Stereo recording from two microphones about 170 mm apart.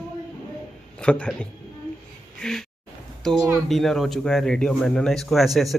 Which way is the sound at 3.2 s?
Centre (ahead or behind).